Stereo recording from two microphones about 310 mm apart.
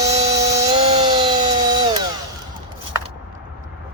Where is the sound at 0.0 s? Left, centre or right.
Right.